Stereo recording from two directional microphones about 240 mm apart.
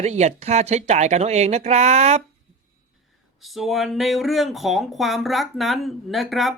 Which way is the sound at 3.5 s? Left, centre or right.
Centre.